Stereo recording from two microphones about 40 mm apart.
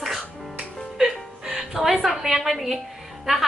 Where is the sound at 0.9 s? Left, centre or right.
Centre.